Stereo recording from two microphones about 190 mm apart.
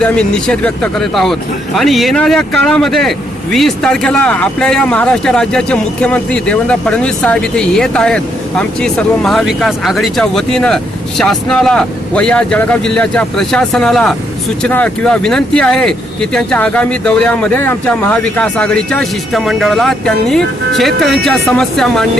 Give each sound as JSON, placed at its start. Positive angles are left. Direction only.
{"t": 0.0, "sound": "speech", "side_deg": 5}